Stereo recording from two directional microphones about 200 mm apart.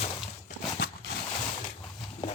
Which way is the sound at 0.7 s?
55° left (ahead or behind).